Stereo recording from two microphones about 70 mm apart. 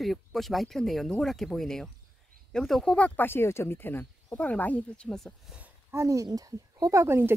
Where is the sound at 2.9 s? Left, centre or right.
Left.